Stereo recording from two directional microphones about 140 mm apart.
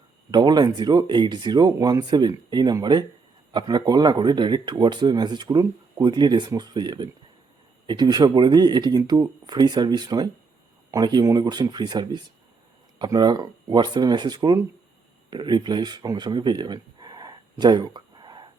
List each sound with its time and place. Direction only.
0.3 s speech: 30° right (ahead or behind)